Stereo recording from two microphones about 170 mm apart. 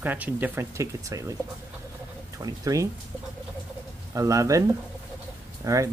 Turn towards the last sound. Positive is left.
turn(degrees=-20)  # may be behind; listen again after turning